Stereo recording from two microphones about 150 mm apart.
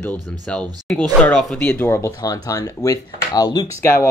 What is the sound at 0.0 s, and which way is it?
Speech, 5° left (ahead or behind).